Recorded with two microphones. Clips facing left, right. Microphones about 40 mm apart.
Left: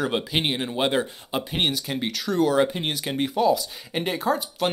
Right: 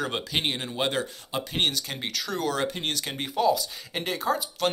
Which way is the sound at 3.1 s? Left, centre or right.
Centre.